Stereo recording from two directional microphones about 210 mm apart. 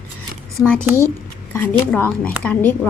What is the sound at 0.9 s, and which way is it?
Speech, 15° right (ahead or behind).